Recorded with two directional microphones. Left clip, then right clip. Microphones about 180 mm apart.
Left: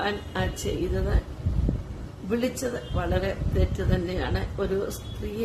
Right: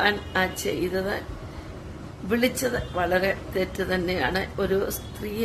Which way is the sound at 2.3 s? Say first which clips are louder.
Right 4 dB; 15° right (ahead or behind).